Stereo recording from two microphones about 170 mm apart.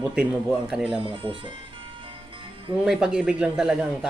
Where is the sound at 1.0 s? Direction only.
30° right (ahead or behind).